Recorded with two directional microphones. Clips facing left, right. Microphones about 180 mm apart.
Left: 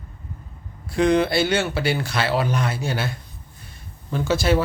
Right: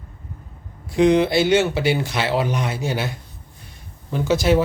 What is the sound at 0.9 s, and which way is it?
Speech, 20° right (ahead or behind).